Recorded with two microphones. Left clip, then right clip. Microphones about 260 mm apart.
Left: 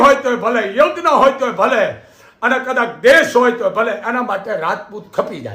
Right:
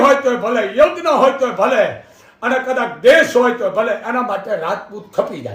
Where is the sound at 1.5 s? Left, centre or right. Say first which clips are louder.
Left 1 dB; centre.